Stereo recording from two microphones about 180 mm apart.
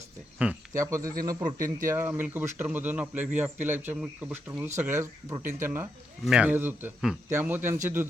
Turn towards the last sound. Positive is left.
turn(degrees=-10)  # may be behind; listen again after turning